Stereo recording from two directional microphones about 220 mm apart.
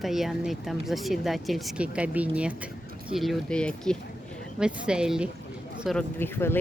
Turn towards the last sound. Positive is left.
turn(degrees=10)  # may be behind; listen again after turning